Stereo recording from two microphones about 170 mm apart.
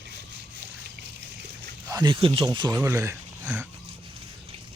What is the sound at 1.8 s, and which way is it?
Speech, 25° right (ahead or behind).